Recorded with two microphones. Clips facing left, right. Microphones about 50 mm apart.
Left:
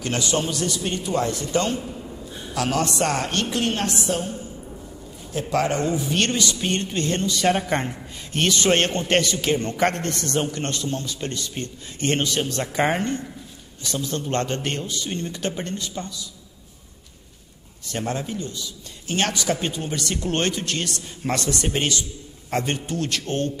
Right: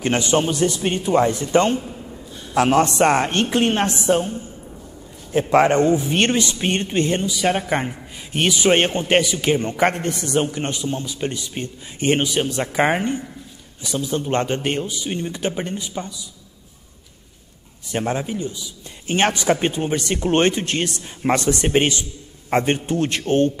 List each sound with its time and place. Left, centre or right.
0.0 s speech: right
5.4 s a man's voice: right
17.8 s speech: right